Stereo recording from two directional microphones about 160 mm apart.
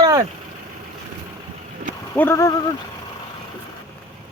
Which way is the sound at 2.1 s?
15° left (ahead or behind).